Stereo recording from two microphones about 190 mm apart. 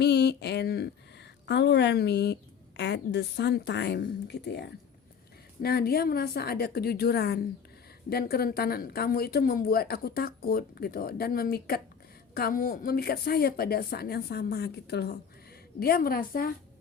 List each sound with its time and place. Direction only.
0.0 s a woman's voice: 60° left (ahead or behind)